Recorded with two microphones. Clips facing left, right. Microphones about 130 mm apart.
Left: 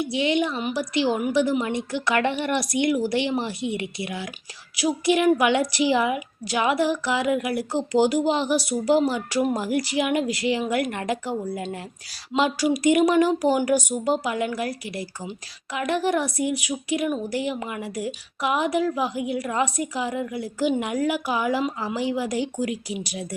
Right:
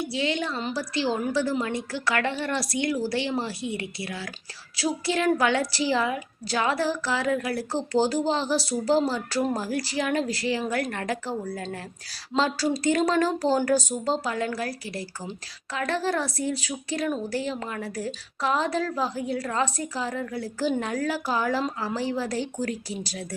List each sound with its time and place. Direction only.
0.0 s a woman's voice: 20° left (ahead or behind)